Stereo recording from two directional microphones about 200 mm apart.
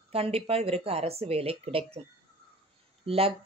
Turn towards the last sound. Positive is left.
turn(degrees=-30)  # may be behind; listen again after turning